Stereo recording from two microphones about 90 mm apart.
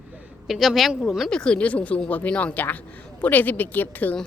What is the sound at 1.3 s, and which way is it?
A woman's voice, 10° left (ahead or behind).